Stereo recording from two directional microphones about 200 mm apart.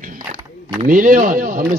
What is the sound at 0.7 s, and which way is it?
Speech, 45° right (ahead or behind).